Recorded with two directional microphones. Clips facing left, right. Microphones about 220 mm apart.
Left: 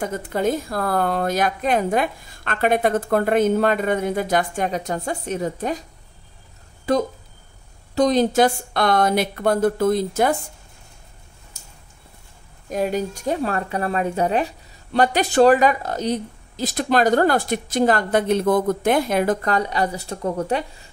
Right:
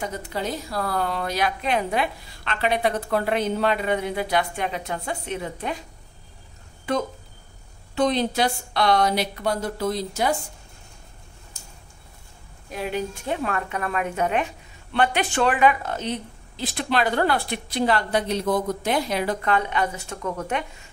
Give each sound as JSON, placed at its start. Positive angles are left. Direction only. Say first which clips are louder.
{"t": 0.0, "sound": "a woman's voice", "louder": "left 7 dB", "side_deg": 50}
{"t": 7.9, "sound": "a woman's voice", "louder": "left 5 dB", "side_deg": 40}
{"t": 12.6, "sound": "a woman's voice", "louder": "left 5 dB", "side_deg": 45}